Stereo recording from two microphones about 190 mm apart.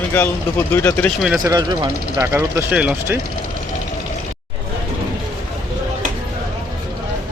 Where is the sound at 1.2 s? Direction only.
5° right (ahead or behind).